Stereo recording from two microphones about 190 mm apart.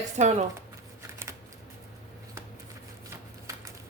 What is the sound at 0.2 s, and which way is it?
Speech, 40° right (ahead or behind).